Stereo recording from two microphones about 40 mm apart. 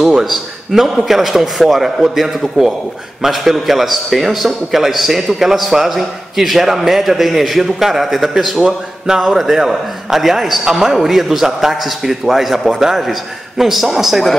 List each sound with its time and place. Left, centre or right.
0.2 s a man's voice: centre